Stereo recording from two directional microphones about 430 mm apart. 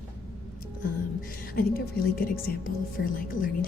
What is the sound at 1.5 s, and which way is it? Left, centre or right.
Speech, centre.